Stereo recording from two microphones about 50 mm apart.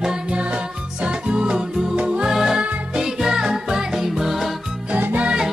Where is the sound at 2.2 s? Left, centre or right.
Centre.